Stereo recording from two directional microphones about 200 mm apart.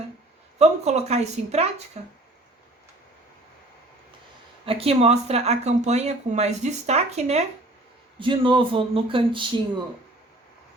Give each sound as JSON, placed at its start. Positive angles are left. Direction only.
{"t": 0.6, "sound": "speech", "side_deg": -35}
{"t": 4.6, "sound": "speech", "side_deg": -30}